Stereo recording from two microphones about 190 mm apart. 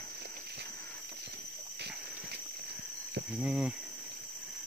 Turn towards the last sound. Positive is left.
turn(degrees=-5)  # may be behind; listen again after turning